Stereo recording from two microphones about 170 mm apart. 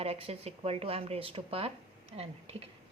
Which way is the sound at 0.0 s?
35° right (ahead or behind).